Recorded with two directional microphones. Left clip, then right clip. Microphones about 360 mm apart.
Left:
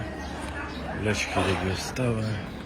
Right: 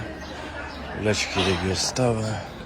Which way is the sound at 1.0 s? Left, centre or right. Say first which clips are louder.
Right 3 dB; centre.